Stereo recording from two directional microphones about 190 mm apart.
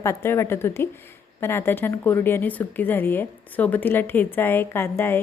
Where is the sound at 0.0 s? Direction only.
15° left (ahead or behind).